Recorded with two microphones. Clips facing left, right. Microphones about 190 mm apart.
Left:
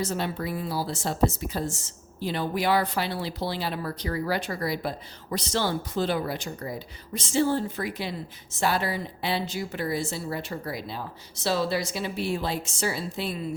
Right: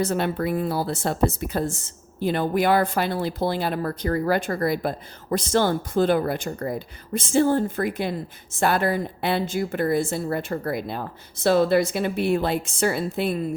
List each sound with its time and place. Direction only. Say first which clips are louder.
0.0 s a woman's voice: right 6 dB; 60° right (ahead or behind)